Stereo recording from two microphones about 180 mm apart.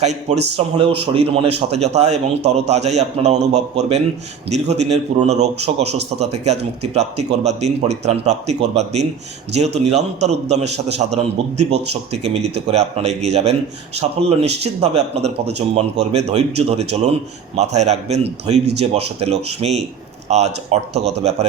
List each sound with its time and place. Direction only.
0.0 s a man's voice: 40° right (ahead or behind)
14.6 s a man's voice: 35° right (ahead or behind)